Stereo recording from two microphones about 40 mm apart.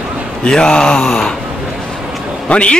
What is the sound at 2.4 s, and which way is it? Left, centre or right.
Speech, left.